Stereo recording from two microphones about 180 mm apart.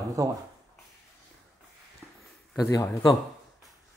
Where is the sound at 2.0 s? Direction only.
Centre (ahead or behind).